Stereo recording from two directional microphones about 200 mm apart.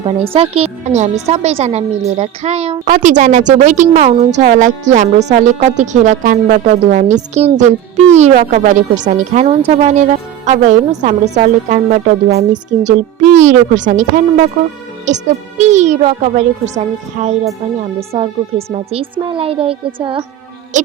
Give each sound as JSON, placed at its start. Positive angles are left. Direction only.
{"t": 0.0, "sound": "speech", "side_deg": -30}